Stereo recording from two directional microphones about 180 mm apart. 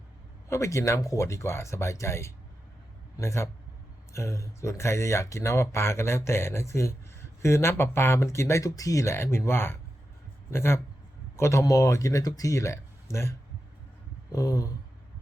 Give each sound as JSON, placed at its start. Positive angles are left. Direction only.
{"t": 0.4, "sound": "speech", "side_deg": 15}
{"t": 14.3, "sound": "speech", "side_deg": 20}